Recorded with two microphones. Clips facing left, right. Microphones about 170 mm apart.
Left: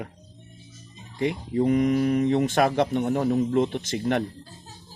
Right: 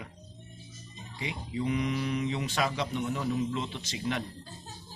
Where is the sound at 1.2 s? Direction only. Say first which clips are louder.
Left 11 dB; 55° left (ahead or behind).